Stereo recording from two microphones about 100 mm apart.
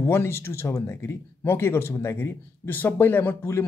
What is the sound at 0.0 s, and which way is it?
Speech, 25° left (ahead or behind).